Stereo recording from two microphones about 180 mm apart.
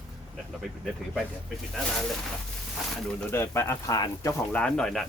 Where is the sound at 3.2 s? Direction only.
15° left (ahead or behind).